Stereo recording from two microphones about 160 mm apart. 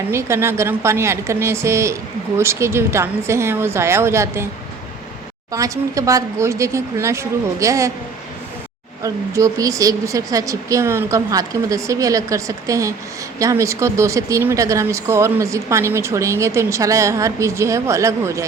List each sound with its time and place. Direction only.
0.1 s a woman's voice: 15° right (ahead or behind)
5.5 s speech: 20° right (ahead or behind)
9.0 s speech: 20° right (ahead or behind)